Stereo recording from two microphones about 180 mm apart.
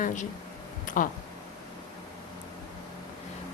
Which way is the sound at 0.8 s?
50° left (ahead or behind).